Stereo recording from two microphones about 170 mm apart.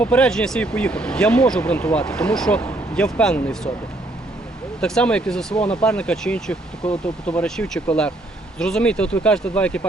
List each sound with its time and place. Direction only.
0.0 s speech: 5° left (ahead or behind)
4.8 s speech: 5° left (ahead or behind)